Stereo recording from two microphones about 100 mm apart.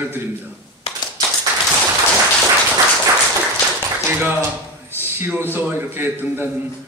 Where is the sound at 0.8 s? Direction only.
90° left.